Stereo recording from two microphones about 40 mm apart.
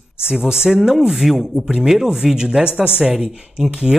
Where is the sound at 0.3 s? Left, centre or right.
Centre.